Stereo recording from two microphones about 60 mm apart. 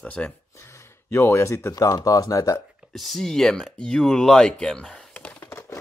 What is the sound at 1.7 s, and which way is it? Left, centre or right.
Speech, left.